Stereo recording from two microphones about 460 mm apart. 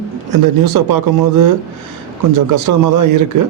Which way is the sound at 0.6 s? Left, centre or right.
Right.